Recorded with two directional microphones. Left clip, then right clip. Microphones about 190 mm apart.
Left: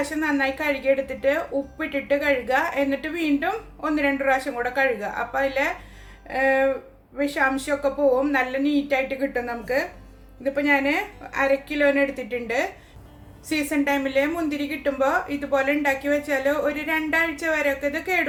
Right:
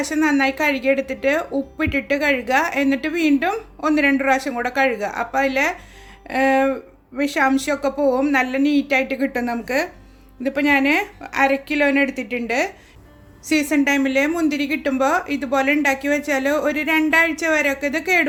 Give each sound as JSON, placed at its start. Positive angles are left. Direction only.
{"t": 0.0, "sound": "a woman's voice", "side_deg": -55}